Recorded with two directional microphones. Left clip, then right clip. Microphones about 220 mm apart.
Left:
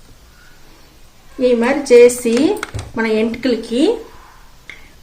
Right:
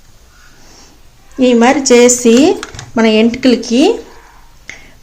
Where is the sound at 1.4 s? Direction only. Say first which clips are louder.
Right 5 dB; 50° right (ahead or behind).